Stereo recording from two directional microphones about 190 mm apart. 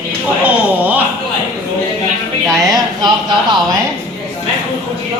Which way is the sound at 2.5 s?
20° right (ahead or behind).